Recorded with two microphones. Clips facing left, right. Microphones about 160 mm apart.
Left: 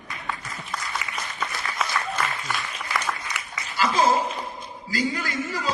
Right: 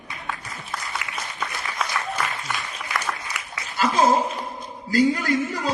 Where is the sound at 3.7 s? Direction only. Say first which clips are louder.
Right 1 dB; 55° right (ahead or behind).